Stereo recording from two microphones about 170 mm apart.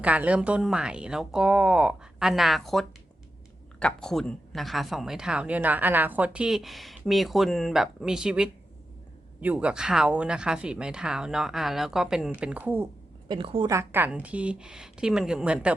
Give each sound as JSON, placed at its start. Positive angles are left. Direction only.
{"t": 0.0, "sound": "speech", "side_deg": -10}
{"t": 13.2, "sound": "a woman's voice", "side_deg": -30}
{"t": 13.7, "sound": "speech", "side_deg": -15}